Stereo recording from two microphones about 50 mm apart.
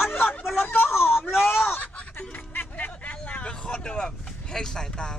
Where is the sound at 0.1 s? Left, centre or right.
Left.